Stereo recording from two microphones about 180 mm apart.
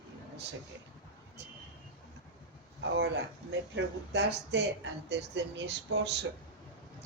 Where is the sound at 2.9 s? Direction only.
85° right.